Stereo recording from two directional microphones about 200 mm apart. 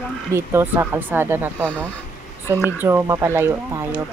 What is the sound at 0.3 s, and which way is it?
A woman's voice, 10° right (ahead or behind).